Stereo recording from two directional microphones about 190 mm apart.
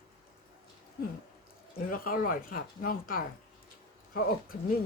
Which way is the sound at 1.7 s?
50° left (ahead or behind).